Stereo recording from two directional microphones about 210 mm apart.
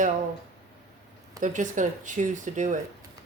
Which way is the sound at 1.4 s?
35° right (ahead or behind).